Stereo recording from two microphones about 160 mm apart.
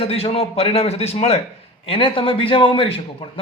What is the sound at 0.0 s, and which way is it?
A man's voice, 40° left (ahead or behind).